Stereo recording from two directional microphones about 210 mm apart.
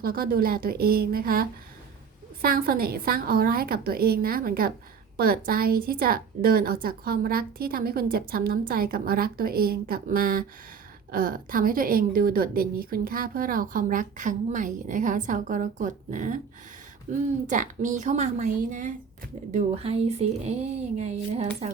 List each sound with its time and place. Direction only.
0.0 s a woman's voice: 45° right (ahead or behind)
19.5 s speech: 30° right (ahead or behind)